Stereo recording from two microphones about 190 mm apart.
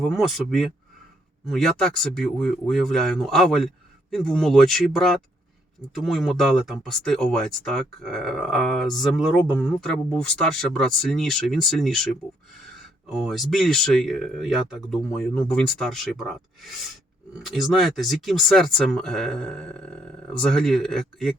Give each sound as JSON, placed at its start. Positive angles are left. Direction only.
{"t": 0.0, "sound": "speech", "side_deg": 0}
{"t": 13.1, "sound": "speech", "side_deg": 0}